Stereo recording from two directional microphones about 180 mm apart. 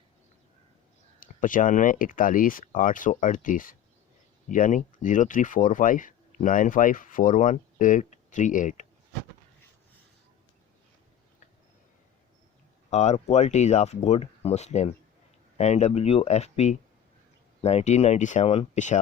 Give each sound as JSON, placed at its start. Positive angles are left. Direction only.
{"t": 1.2, "sound": "speech", "side_deg": 50}
{"t": 12.9, "sound": "speech", "side_deg": 40}